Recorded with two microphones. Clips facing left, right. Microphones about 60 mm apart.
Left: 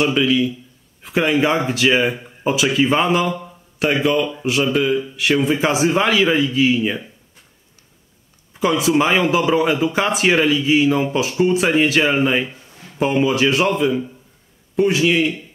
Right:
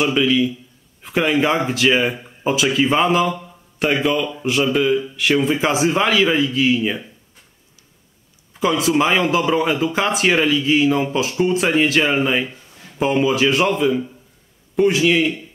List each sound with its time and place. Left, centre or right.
0.0 s speech: centre
8.5 s speech: centre